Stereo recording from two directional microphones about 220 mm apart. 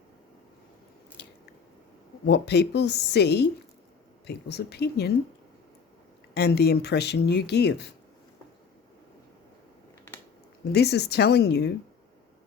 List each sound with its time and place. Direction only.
1.2 s biting: 50° left (ahead or behind)
2.2 s speech: 50° left (ahead or behind)
6.3 s speech: 45° left (ahead or behind)
10.7 s speech: 50° left (ahead or behind)